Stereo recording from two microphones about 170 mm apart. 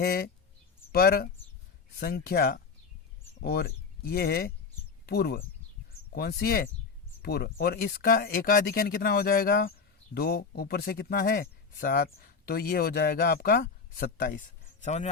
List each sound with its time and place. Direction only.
0.0 s speech: 65° left (ahead or behind); by 15.1 s 45° left (ahead or behind)